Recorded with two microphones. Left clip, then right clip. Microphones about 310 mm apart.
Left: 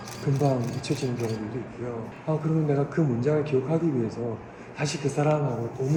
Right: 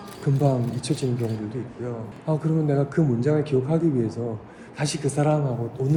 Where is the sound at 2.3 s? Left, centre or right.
Right.